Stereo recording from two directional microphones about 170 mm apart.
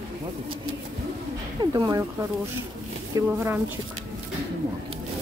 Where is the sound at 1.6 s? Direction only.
25° right (ahead or behind).